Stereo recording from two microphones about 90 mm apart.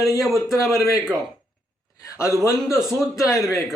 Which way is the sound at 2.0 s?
35° left (ahead or behind).